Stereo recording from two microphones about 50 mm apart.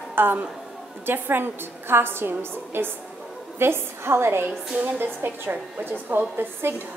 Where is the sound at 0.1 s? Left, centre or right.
Right.